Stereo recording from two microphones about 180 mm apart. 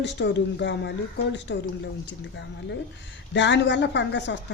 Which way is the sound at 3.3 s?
75° left (ahead or behind).